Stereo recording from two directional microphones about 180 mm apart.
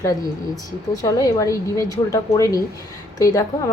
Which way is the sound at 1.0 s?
20° left (ahead or behind).